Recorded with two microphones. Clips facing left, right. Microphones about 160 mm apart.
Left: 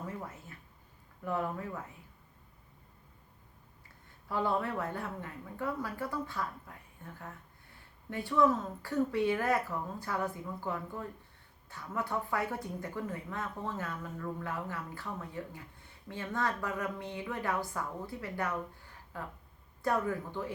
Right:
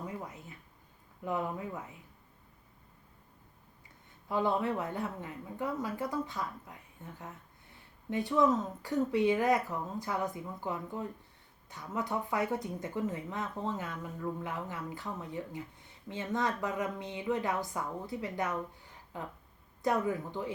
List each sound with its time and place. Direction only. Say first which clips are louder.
0.0 s a sound: right 1 dB; 20° right (ahead or behind)
1.2 s speech: even; 15° right (ahead or behind)
4.3 s speech: right 2 dB; 20° right (ahead or behind)